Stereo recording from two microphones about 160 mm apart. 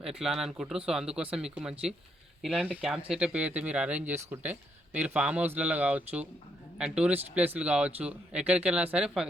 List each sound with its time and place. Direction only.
0.0 s speech: 5° right (ahead or behind)